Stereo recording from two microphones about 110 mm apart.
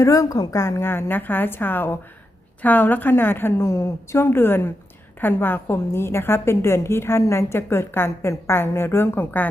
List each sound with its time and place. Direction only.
0.0 s a woman's voice: 30° left (ahead or behind)